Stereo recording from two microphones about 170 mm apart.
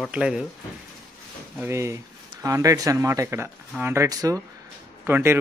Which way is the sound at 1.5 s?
15° right (ahead or behind).